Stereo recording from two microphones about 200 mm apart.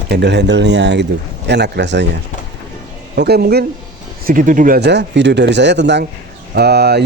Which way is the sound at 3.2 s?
50° right (ahead or behind).